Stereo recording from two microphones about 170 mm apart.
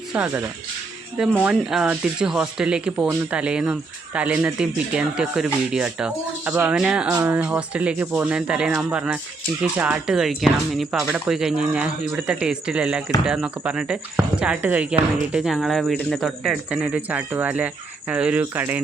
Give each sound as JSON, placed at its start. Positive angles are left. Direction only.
{"t": 0.1, "sound": "speech", "side_deg": -5}